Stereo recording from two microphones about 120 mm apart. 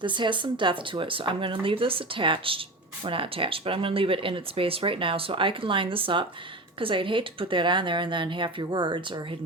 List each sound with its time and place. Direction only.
0.0 s speech: 40° right (ahead or behind)